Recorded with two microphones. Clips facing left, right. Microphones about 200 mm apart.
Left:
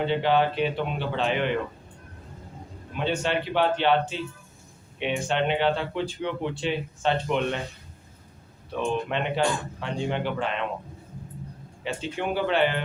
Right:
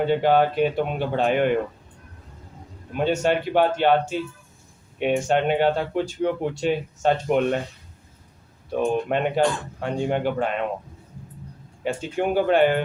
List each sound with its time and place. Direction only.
0.0 s speech: 45° right (ahead or behind)
2.9 s speech: 45° right (ahead or behind)
8.7 s speech: 45° right (ahead or behind)
11.8 s speech: 45° right (ahead or behind)